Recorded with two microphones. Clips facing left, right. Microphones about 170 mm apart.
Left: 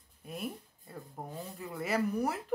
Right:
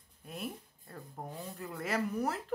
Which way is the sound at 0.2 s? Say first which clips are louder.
Left 2 dB; 5° left (ahead or behind).